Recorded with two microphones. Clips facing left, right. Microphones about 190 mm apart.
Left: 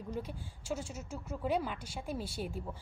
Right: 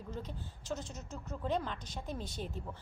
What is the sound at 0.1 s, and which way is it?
A woman's voice, 10° left (ahead or behind).